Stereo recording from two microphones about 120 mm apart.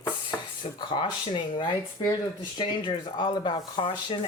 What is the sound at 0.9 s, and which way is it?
Speech, 40° left (ahead or behind).